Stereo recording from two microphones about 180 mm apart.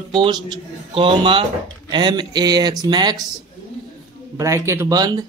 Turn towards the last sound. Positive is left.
turn(degrees=-20)  # may be behind; listen again after turning